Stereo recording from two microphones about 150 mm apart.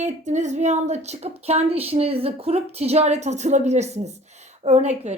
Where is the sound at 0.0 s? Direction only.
50° right (ahead or behind).